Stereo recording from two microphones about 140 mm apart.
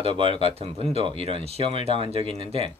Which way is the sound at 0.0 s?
40° right (ahead or behind).